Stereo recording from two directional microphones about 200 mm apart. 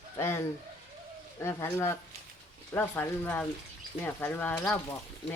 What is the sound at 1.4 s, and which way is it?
Speech, 15° left (ahead or behind).